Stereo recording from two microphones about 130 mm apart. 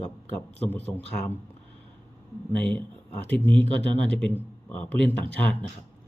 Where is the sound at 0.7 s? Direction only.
15° left (ahead or behind).